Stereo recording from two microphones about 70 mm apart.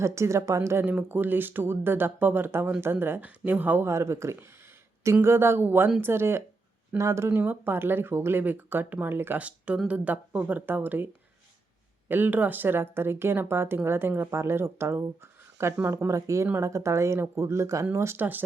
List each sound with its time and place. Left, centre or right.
0.0 s speech: right
0.9 s a woman's voice: right
3.8 s a woman's voice: right
4.4 s a sound: right
5.2 s a woman's voice: right
9.4 s a woman's voice: centre; by 15.7 s right
15.8 s speech: right
16.0 s a woman's voice: right
18.2 s speech: right